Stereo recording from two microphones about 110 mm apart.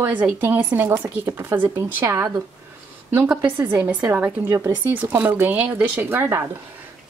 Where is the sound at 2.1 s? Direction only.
35° right (ahead or behind).